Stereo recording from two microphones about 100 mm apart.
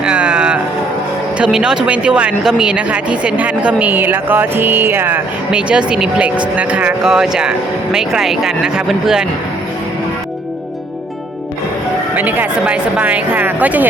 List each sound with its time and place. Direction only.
0.0 s music: 10° right (ahead or behind)
1.4 s speech: 5° right (ahead or behind); by 5.2 s 20° right (ahead or behind)
5.5 s speech: 10° right (ahead or behind)
12.1 s speech: 15° right (ahead or behind)